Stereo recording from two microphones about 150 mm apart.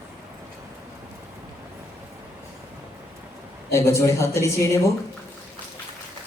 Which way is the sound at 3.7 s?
20° left (ahead or behind).